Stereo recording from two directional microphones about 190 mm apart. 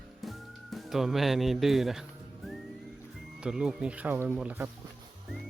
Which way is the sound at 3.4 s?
5° right (ahead or behind).